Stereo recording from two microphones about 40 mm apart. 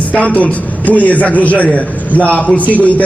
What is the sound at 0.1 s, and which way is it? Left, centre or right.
A man's voice, left.